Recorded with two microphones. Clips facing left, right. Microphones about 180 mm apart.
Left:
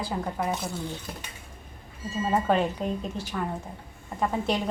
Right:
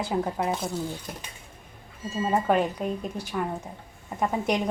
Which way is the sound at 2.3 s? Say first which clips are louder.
Right 1 dB; 10° right (ahead or behind).